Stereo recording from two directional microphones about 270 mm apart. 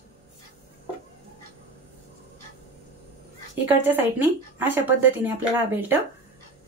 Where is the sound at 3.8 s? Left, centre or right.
Centre.